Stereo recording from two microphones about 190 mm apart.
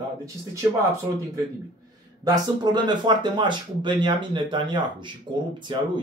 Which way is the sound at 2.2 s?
20° right (ahead or behind).